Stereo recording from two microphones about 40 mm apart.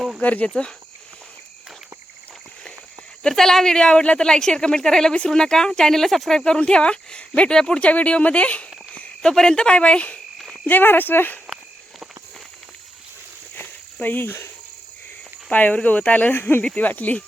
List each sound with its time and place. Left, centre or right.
0.2 s speech: left
0.4 s speech: left
3.2 s speech: centre
6.3 s speech: centre
9.3 s speech: centre; by 10.2 s left
10.7 s speech: left
11.4 s a sound: centre
13.6 s cricket: left
15.4 s speech: left
16.3 s speech: left
16.7 s speech: left